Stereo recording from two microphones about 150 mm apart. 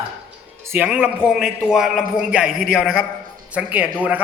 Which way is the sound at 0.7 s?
10° right (ahead or behind).